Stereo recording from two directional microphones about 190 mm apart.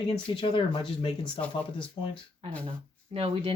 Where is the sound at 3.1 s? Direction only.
30° right (ahead or behind).